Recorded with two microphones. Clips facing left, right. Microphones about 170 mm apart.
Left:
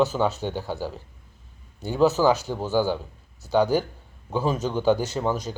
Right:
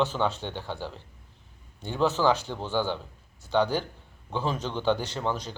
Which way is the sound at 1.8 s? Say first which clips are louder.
Left 5 dB; 5° left (ahead or behind).